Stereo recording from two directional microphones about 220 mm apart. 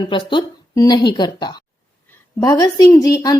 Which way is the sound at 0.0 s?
20° left (ahead or behind).